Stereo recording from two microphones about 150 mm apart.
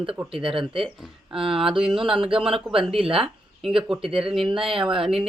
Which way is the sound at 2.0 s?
35° right (ahead or behind).